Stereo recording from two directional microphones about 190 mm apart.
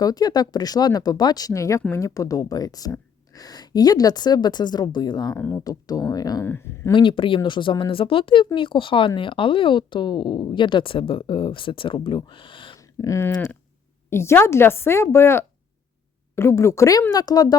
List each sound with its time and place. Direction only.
0.0 s speech: 20° left (ahead or behind)
6.9 s speech: 25° left (ahead or behind)